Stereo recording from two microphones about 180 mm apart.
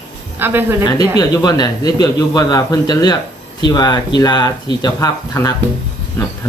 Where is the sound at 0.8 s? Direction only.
20° left (ahead or behind).